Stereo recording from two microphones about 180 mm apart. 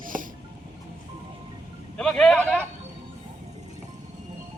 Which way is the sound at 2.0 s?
5° left (ahead or behind).